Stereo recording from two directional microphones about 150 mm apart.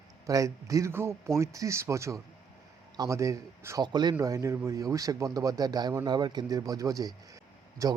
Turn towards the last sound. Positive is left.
turn(degrees=-20)  # may be behind; listen again after turning